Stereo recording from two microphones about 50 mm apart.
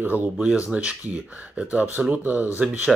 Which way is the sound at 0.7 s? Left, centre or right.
Right.